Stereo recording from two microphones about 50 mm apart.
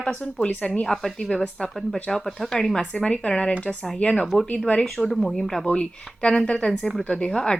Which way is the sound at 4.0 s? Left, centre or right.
Left.